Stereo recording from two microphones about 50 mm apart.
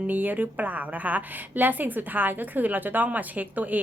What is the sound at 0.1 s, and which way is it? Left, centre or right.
A woman's voice, right.